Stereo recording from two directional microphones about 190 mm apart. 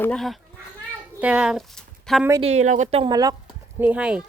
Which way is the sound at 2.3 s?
30° right (ahead or behind).